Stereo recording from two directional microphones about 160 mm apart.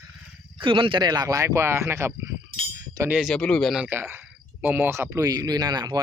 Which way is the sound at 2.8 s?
20° right (ahead or behind).